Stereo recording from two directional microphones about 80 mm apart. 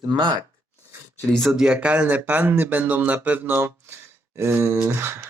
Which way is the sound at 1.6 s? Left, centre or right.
Centre.